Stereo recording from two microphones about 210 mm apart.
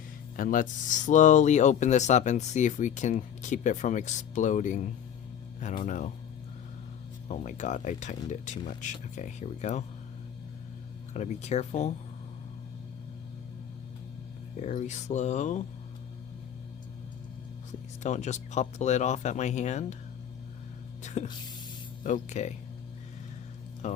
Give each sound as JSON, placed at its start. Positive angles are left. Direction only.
{"t": 0.3, "sound": "speech", "side_deg": 40}
{"t": 7.3, "sound": "speech", "side_deg": 35}
{"t": 11.1, "sound": "speech", "side_deg": 30}
{"t": 14.5, "sound": "speech", "side_deg": 35}
{"t": 17.7, "sound": "speech", "side_deg": 35}
{"t": 21.0, "sound": "a sound", "side_deg": 35}
{"t": 22.0, "sound": "speech", "side_deg": 35}
{"t": 23.8, "sound": "speech", "side_deg": 35}